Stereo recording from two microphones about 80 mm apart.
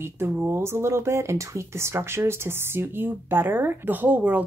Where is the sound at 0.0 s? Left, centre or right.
Right.